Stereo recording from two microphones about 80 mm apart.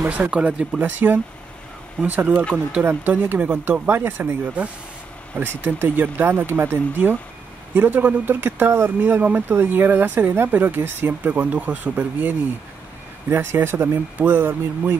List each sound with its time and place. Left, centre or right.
0.0 s speech: centre